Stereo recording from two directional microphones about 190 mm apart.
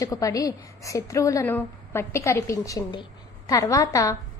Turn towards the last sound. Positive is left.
turn(degrees=15)  # may be behind; listen again after turning